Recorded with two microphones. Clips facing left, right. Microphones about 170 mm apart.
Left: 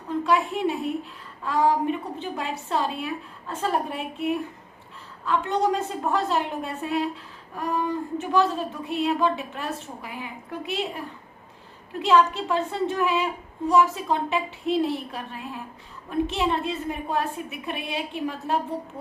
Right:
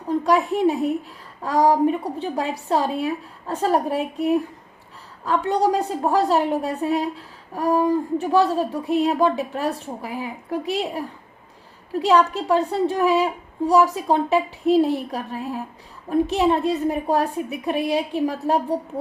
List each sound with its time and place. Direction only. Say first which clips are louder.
0.3 s a woman's voice: right 5 dB; 40° right (ahead or behind)